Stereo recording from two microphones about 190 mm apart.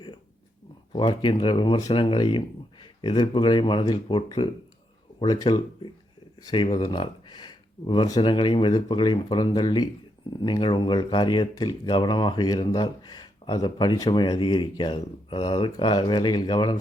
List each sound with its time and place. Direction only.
0.9 s speech: 25° left (ahead or behind)